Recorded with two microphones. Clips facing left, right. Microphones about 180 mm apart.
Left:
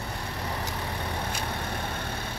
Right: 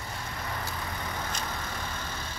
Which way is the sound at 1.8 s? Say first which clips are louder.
Left 4 dB; 65° left (ahead or behind).